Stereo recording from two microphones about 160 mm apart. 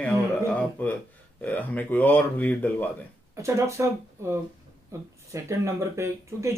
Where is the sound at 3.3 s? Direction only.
15° right (ahead or behind).